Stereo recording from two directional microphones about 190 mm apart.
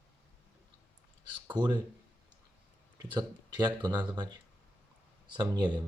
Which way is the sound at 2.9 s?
25° right (ahead or behind).